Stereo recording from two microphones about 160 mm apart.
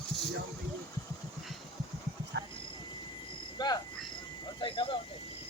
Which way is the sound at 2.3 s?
90° right.